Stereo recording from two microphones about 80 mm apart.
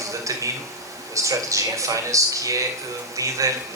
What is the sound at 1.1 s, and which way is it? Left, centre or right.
Speech, right.